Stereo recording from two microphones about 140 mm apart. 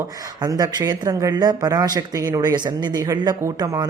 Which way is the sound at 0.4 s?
25° right (ahead or behind).